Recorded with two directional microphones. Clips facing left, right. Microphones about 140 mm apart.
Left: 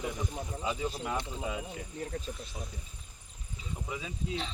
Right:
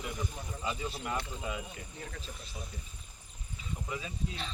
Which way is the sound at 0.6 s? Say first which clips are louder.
Left 2 dB; 15° left (ahead or behind).